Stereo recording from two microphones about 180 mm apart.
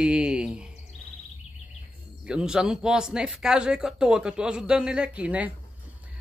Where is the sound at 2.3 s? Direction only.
5° right (ahead or behind).